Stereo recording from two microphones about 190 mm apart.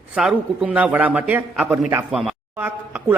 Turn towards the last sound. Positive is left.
turn(degrees=-10)  # may be behind; listen again after turning